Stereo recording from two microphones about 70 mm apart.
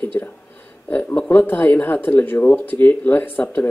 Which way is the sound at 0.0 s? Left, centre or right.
Left.